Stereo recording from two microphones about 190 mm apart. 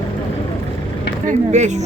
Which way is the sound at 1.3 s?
35° right (ahead or behind).